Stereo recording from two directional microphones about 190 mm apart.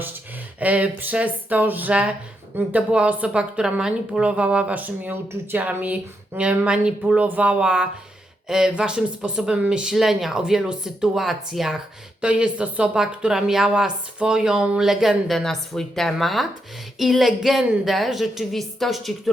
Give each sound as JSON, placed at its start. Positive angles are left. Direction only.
{"t": 0.6, "sound": "a woman's voice", "side_deg": -10}